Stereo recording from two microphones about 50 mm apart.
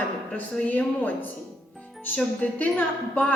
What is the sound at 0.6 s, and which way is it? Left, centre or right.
A woman's voice, left.